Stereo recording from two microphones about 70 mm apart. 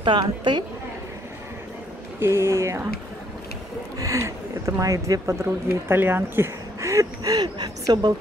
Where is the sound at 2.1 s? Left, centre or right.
Right.